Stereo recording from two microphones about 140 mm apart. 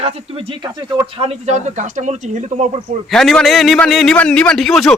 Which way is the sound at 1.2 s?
55° right (ahead or behind).